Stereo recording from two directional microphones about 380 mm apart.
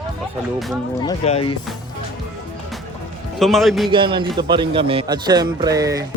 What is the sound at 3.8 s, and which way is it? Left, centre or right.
A man's voice, centre.